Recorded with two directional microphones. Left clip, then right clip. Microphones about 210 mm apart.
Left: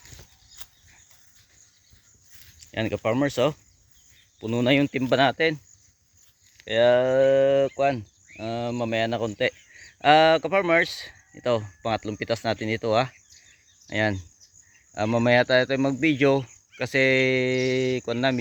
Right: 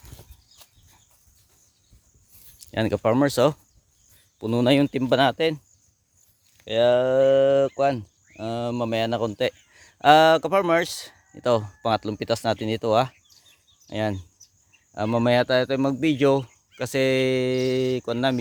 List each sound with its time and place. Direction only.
2.6 s speech: 25° right (ahead or behind)
6.7 s speech: 10° right (ahead or behind)